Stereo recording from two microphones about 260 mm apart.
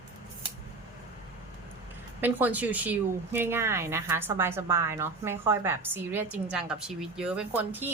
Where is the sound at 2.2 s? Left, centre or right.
Centre.